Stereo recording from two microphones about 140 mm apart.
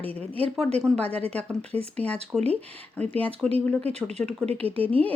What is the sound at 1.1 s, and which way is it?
Speech, 45° right (ahead or behind).